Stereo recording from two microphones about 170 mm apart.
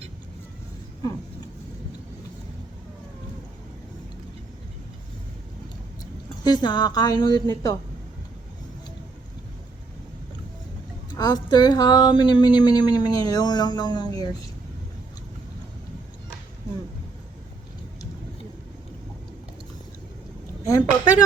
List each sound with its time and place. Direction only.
6.4 s speech: 25° left (ahead or behind)
11.2 s speech: 25° left (ahead or behind)
20.7 s speech: 20° left (ahead or behind)